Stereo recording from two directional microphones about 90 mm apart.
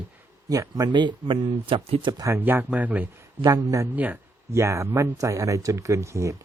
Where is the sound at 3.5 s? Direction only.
40° right (ahead or behind).